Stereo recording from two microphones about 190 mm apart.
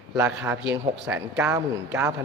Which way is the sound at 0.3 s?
15° right (ahead or behind).